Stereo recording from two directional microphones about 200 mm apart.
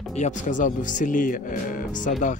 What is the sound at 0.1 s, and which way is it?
Speech, 35° left (ahead or behind).